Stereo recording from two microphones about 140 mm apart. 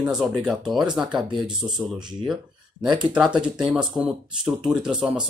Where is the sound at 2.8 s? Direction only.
30° right (ahead or behind).